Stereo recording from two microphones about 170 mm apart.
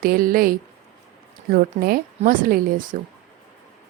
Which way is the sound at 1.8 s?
60° right (ahead or behind).